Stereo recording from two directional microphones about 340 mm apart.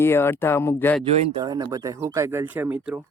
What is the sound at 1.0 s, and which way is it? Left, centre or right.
Speech, centre.